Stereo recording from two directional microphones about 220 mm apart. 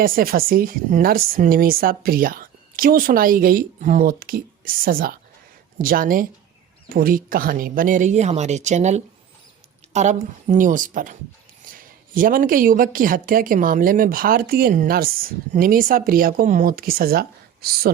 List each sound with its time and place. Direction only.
0.0 s speech: 40° right (ahead or behind)